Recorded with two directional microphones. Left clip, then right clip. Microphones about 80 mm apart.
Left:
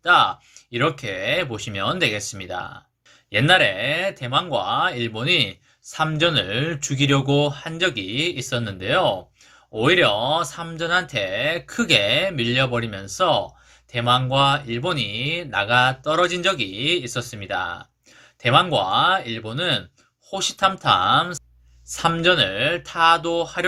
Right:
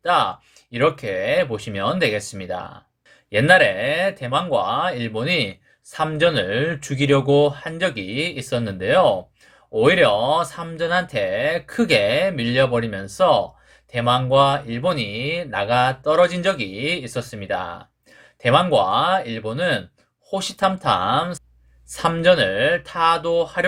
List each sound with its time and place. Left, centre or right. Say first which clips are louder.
0.0 s speech: left 2 dB; right